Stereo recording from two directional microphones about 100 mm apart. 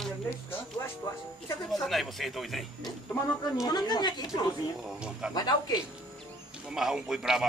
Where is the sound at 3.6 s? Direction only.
45° left (ahead or behind).